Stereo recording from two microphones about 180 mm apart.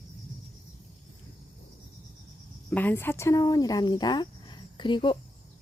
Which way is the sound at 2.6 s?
10° left (ahead or behind).